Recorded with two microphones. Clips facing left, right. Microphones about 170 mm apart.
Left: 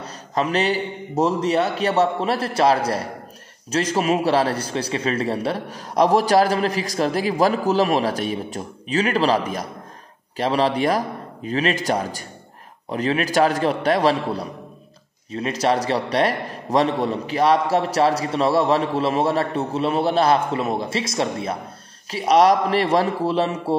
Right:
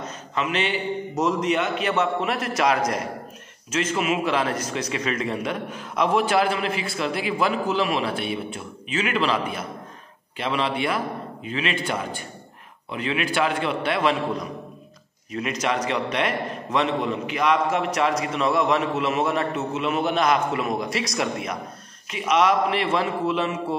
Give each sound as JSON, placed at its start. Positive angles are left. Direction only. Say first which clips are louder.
{"t": 0.0, "sound": "a man's voice", "louder": "left 4 dB", "side_deg": 40}